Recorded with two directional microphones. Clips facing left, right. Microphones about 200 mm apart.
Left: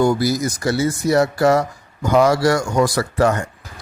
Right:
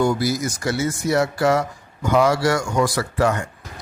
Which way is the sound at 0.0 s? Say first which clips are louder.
Left 3 dB; 40° left (ahead or behind).